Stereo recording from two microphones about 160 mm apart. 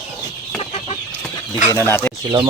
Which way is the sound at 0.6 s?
40° left (ahead or behind).